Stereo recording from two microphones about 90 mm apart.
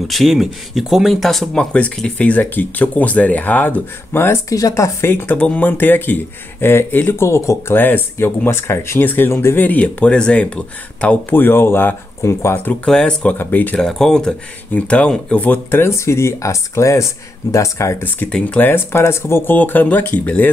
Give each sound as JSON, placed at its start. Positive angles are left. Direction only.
{"t": 0.1, "sound": "speech", "side_deg": 0}
{"t": 4.6, "sound": "speech", "side_deg": 40}
{"t": 5.0, "sound": "speech", "side_deg": 25}
{"t": 12.8, "sound": "speech", "side_deg": 10}
{"t": 13.7, "sound": "speech", "side_deg": 5}
{"t": 15.8, "sound": "speech", "side_deg": 30}
{"t": 18.3, "sound": "speech", "side_deg": 15}